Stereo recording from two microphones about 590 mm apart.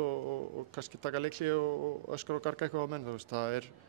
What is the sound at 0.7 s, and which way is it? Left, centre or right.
Speech, right.